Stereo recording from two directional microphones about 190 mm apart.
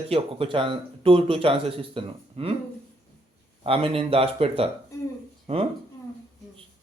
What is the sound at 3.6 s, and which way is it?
Speech, 30° right (ahead or behind).